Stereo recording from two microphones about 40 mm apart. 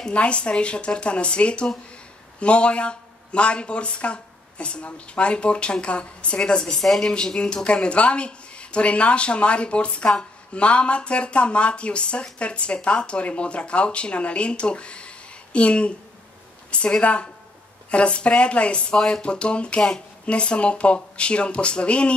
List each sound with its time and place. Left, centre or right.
0.1 s speech: left
17.0 s speech: left